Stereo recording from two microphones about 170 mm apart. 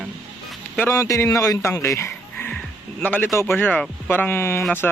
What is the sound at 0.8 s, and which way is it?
Speech, 20° left (ahead or behind).